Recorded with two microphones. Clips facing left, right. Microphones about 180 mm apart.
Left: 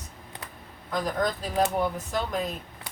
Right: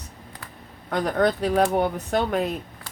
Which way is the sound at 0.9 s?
65° right (ahead or behind).